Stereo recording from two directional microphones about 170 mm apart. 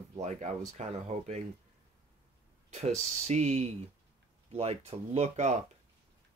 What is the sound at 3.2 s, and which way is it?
Speech, 40° right (ahead or behind).